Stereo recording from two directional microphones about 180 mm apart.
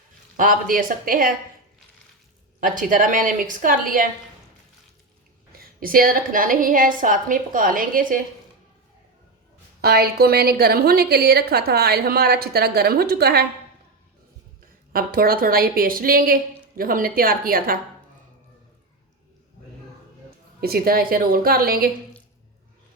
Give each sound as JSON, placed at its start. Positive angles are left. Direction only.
{"t": 0.3, "sound": "a woman's voice", "side_deg": -50}
{"t": 2.6, "sound": "a woman's voice", "side_deg": -50}
{"t": 5.5, "sound": "a woman's voice", "side_deg": -55}
{"t": 9.8, "sound": "a woman's voice", "side_deg": -60}
{"t": 14.9, "sound": "a woman's voice", "side_deg": -55}
{"t": 20.6, "sound": "a woman's voice", "side_deg": -55}